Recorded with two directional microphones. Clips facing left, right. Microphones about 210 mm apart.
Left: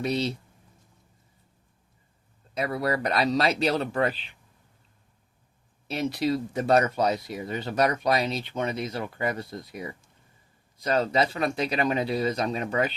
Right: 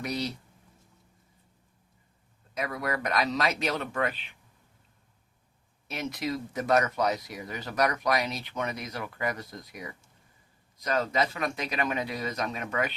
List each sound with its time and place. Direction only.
0.0 s speech: 25° left (ahead or behind)
2.6 s speech: 30° left (ahead or behind)
5.9 s speech: 30° left (ahead or behind)